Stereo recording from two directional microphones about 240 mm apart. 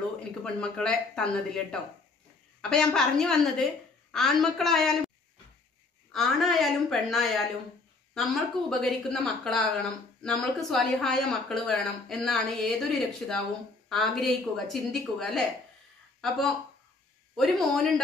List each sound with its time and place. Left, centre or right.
0.3 s a woman's voice: centre
6.1 s a woman's voice: centre